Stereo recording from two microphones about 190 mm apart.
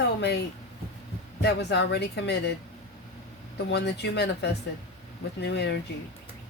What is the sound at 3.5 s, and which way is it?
Speech, 60° left (ahead or behind).